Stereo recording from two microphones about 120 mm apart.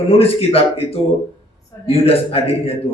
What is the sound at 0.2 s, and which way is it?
A man's voice, 55° left (ahead or behind).